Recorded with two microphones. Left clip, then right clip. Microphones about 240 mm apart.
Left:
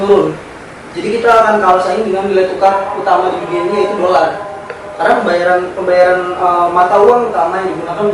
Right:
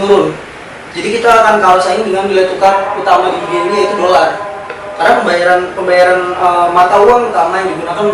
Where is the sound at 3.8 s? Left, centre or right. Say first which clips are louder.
Right 2 dB; left.